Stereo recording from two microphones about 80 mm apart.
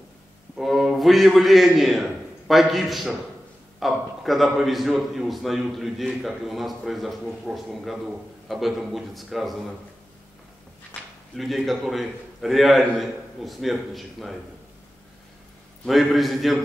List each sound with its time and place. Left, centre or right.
0.6 s a man's voice: centre
11.3 s a man's voice: centre
15.8 s a man's voice: centre